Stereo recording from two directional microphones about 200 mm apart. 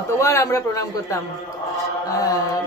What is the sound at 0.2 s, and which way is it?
A man's voice, 15° left (ahead or behind).